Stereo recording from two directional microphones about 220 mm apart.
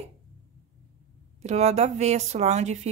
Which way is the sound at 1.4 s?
30° right (ahead or behind).